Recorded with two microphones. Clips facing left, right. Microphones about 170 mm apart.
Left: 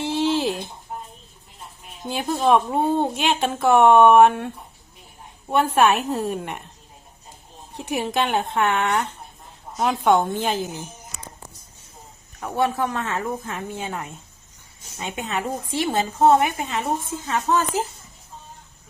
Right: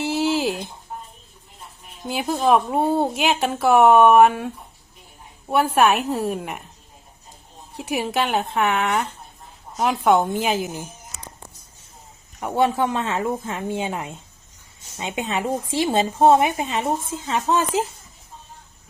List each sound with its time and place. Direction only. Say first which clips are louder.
0.0 s a sound: even; 5° right (ahead or behind)
2.0 s a woman's voice: even; 5° right (ahead or behind)
7.8 s a woman's voice: even; 5° right (ahead or behind)
12.4 s a woman's voice: right 3 dB; 20° right (ahead or behind)